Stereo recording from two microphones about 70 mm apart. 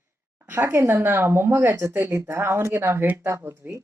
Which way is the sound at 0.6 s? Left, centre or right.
Right.